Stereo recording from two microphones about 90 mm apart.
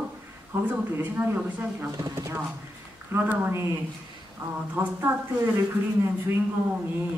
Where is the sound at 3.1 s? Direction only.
20° right (ahead or behind).